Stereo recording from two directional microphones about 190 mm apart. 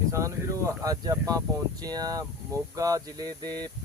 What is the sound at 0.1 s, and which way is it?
Speech, 15° right (ahead or behind).